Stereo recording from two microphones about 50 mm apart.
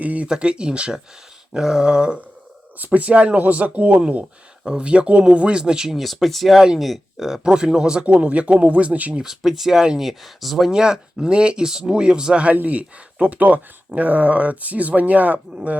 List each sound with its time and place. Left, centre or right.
0.0 s speech: right
0.3 s speech: centre
2.7 s speech: right
4.6 s speech: centre
8.0 s speech: right
9.2 s speech: centre
10.7 s speech: centre; by 15.7 s right